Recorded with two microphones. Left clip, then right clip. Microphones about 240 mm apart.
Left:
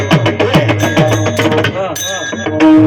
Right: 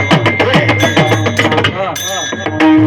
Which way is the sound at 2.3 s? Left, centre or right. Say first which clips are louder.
Left 2 dB; right.